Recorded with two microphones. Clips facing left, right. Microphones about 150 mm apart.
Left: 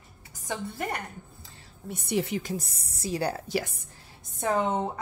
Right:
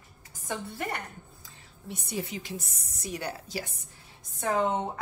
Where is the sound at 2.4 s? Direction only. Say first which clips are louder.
Left 5 dB; 35° left (ahead or behind).